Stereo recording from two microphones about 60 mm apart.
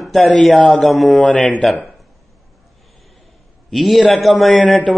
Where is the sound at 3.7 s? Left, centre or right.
Centre.